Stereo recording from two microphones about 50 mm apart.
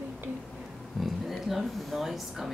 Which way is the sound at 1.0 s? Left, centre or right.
Centre.